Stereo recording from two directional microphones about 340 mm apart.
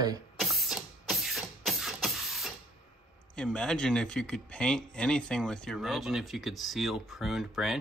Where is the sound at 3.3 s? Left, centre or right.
Centre.